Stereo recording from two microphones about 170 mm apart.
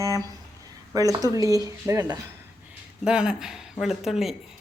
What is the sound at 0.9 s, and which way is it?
Speech, 20° right (ahead or behind).